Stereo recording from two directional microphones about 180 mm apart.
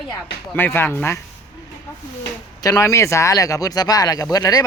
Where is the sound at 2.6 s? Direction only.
20° left (ahead or behind).